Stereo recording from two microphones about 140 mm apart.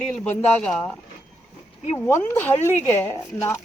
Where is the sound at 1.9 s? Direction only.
15° left (ahead or behind).